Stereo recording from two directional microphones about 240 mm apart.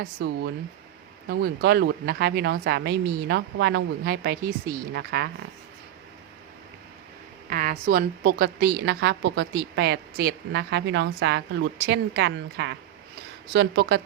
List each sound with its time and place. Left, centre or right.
0.0 s a woman's voice: right
7.5 s a woman's voice: right